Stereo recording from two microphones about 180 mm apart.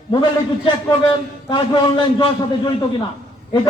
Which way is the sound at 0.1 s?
25° left (ahead or behind).